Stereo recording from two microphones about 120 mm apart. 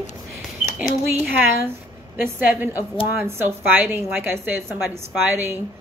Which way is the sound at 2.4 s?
15° right (ahead or behind).